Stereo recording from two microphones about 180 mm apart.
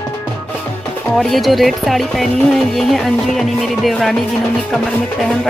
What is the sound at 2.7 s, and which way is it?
Music, centre (ahead or behind).